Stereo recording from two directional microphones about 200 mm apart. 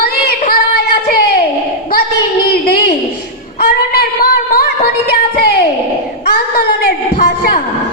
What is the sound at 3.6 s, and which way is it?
Speech, 50° left (ahead or behind).